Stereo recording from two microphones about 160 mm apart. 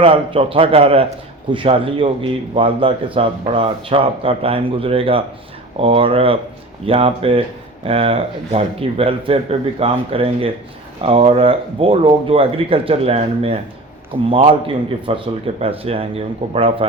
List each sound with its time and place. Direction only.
0.0 s a man's voice: 35° right (ahead or behind)